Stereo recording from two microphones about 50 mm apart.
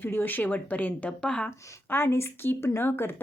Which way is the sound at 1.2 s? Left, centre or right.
Centre.